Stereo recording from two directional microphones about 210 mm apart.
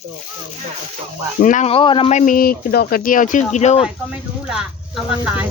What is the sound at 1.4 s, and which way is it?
Speech, 35° left (ahead or behind).